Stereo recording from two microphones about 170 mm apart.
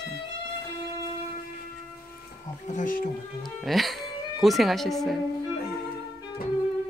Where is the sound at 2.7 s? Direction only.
50° left (ahead or behind).